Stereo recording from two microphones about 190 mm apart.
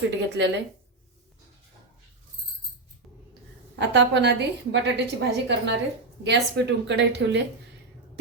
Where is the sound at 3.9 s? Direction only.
65° right (ahead or behind).